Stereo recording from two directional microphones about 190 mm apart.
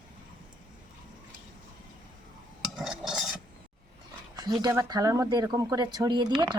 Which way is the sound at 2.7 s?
Centre (ahead or behind).